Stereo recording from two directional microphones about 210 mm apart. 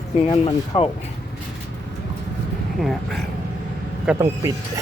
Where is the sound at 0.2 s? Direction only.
25° left (ahead or behind).